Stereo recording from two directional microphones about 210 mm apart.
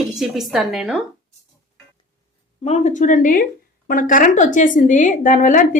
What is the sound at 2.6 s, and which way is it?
A woman's voice, 35° left (ahead or behind).